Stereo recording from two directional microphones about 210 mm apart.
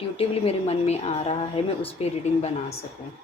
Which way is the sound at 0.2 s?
30° left (ahead or behind).